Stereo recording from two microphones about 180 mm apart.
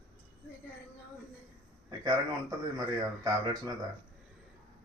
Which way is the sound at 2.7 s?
20° right (ahead or behind).